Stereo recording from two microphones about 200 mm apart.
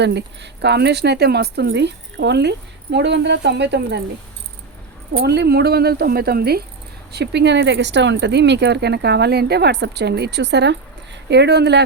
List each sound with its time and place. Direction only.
0.0 s speech: 60° right (ahead or behind)
5.1 s a woman's voice: 55° right (ahead or behind)